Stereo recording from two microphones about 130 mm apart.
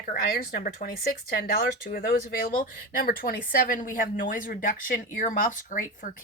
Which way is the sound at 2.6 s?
90° left.